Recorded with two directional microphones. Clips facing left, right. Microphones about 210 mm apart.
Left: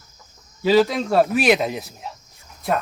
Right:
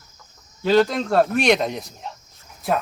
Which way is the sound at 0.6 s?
5° left (ahead or behind).